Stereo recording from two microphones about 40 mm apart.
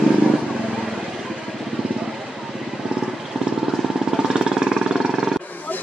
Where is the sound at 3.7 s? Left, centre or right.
Centre.